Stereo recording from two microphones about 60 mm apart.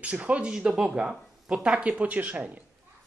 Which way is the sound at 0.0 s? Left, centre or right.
Right.